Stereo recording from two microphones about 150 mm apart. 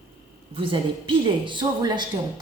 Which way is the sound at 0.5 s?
35° right (ahead or behind).